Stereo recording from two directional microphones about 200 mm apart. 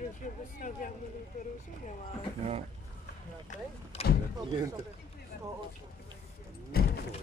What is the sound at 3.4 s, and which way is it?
Speech, 30° left (ahead or behind).